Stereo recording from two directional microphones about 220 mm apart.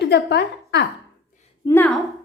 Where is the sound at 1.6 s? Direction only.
10° left (ahead or behind).